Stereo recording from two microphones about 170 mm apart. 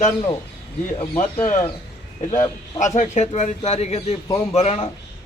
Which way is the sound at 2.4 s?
45° left (ahead or behind).